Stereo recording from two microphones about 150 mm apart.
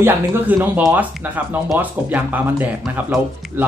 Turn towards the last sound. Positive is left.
turn(degrees=-10)  # may be behind; listen again after turning